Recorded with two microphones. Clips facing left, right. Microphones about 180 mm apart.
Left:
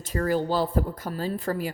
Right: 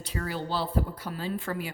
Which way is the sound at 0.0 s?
45° left (ahead or behind).